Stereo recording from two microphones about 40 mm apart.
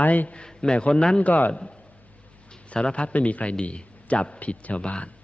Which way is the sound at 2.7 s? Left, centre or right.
Left.